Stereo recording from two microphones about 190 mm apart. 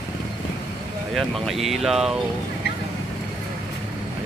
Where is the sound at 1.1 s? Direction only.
Centre (ahead or behind).